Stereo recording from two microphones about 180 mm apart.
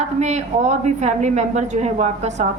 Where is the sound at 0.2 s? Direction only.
40° right (ahead or behind).